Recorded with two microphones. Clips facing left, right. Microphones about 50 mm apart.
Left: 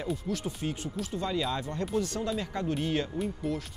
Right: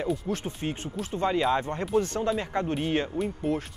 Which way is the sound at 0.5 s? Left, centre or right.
Right.